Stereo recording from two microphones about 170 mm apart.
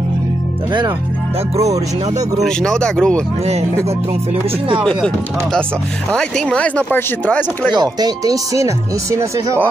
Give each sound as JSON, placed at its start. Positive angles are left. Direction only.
{"t": 1.6, "sound": "speech", "side_deg": -40}
{"t": 2.4, "sound": "chopping", "side_deg": 5}
{"t": 4.8, "sound": "chopping", "side_deg": 5}
{"t": 6.1, "sound": "speech", "side_deg": 5}
{"t": 7.7, "sound": "speech", "side_deg": -25}